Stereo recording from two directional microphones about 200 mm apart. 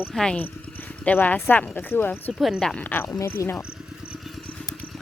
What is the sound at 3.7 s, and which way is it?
Vehicle, 5° right (ahead or behind).